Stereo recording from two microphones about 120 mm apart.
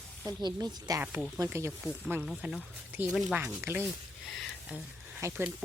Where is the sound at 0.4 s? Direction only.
35° right (ahead or behind).